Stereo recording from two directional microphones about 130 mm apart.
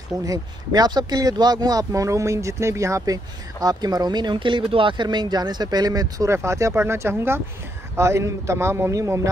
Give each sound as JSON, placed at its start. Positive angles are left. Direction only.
{"t": 0.2, "sound": "speech", "side_deg": -25}